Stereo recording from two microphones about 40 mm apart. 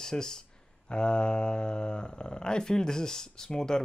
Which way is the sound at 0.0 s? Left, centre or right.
Centre.